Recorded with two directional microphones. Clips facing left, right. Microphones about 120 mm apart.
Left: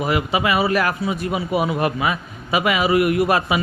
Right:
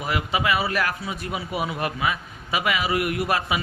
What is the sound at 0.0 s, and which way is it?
A man's voice, 10° left (ahead or behind).